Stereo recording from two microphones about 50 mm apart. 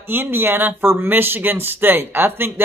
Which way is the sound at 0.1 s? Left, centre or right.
Right.